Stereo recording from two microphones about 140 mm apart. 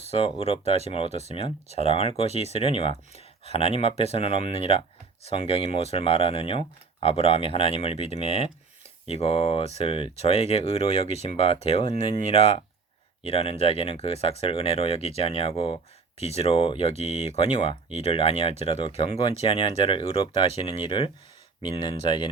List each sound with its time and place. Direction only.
0.1 s speech: 45° left (ahead or behind)